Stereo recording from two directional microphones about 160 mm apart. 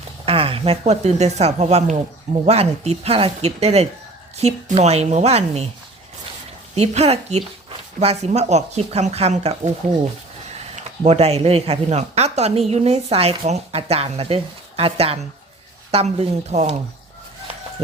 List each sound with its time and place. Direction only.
0.3 s speech: 35° right (ahead or behind)
6.7 s speech: 40° right (ahead or behind)
10.8 s speech: 40° right (ahead or behind)
17.8 s speech: 40° right (ahead or behind)